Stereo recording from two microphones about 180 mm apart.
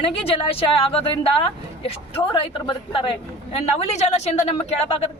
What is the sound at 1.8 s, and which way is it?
Speech, 30° left (ahead or behind).